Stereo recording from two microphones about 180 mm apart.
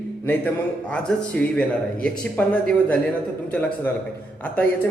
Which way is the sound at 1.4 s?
10° left (ahead or behind).